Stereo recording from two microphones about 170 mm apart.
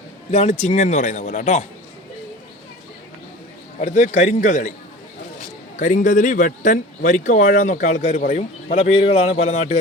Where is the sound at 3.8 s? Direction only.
40° left (ahead or behind).